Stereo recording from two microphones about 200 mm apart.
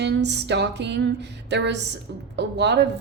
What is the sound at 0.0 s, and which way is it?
A woman's voice, 60° right (ahead or behind).